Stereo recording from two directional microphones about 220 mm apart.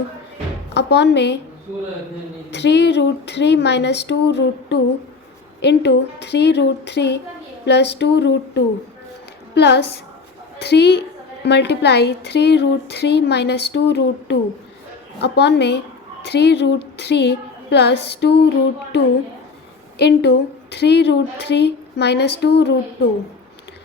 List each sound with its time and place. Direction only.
0.7 s a woman's voice: 50° left (ahead or behind)
2.5 s a woman's voice: 50° left (ahead or behind)